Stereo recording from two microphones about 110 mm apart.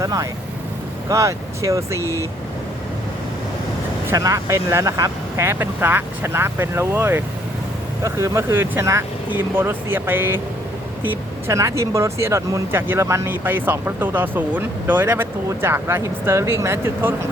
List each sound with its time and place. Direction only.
0.0 s speech: 30° right (ahead or behind)
4.1 s speech: 30° right (ahead or behind)